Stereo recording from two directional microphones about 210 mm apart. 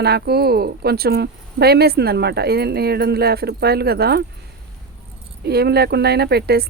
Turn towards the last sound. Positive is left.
turn(degrees=-50)  # may be behind; listen again after turning